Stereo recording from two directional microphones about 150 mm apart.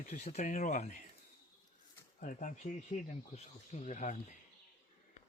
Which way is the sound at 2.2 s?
60° left (ahead or behind).